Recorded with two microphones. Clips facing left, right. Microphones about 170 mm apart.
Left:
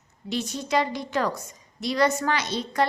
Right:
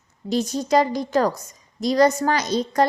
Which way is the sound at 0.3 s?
40° right (ahead or behind).